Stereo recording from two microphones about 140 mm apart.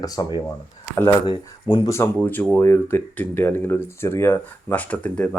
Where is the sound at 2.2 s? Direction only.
15° left (ahead or behind).